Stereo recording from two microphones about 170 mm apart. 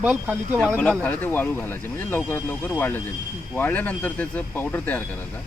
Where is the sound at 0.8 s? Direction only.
5° left (ahead or behind).